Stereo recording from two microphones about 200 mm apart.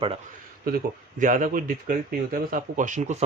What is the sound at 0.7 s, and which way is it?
Speech, 40° right (ahead or behind).